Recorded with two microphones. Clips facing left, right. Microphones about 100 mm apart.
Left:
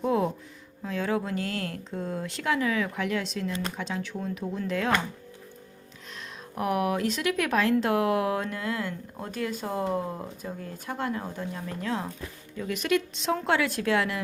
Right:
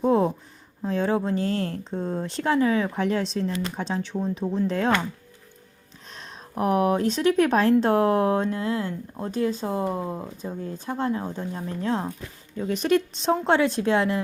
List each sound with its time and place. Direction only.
0.0 s a sound: 30° right (ahead or behind)
0.8 s speech: 30° right (ahead or behind)
6.1 s speech: 35° right (ahead or behind)